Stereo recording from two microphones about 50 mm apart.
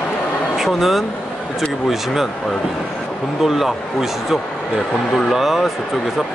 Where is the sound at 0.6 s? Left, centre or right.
Centre.